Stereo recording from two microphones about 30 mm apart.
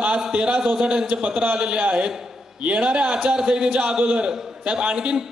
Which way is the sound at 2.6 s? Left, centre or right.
Right.